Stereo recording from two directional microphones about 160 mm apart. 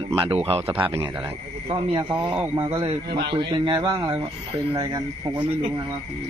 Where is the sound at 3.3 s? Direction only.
30° right (ahead or behind).